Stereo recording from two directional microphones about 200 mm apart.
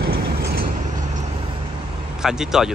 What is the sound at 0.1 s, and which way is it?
Vehicle, 50° right (ahead or behind).